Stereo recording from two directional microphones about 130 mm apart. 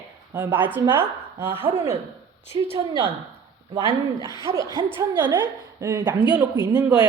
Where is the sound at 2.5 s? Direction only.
35° right (ahead or behind).